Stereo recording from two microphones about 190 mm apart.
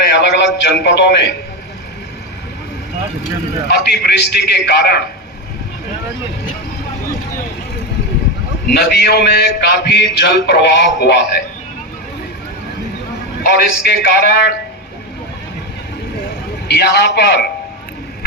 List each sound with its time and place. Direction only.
0.0 s speech: 65° left (ahead or behind)
3.7 s a man's voice: 60° left (ahead or behind)
8.7 s a man's voice: 60° left (ahead or behind)
13.4 s a man's voice: 60° left (ahead or behind)
16.6 s a man's voice: 60° left (ahead or behind)